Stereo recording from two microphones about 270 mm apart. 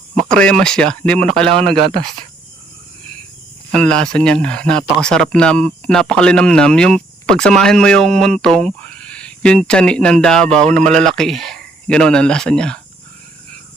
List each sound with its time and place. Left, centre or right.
0.2 s speech: centre
1.8 s speech: centre
3.7 s speech: centre